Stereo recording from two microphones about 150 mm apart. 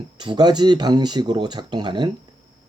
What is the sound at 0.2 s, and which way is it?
Speech, 30° right (ahead or behind).